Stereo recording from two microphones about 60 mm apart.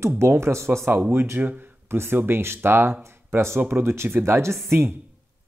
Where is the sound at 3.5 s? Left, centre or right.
Right.